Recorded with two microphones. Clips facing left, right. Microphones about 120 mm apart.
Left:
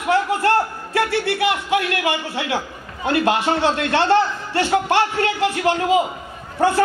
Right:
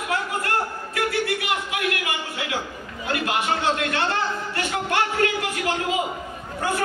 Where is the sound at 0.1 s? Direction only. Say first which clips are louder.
Left 9 dB; 30° left (ahead or behind).